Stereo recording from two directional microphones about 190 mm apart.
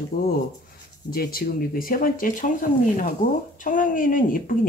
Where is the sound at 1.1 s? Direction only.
50° left (ahead or behind).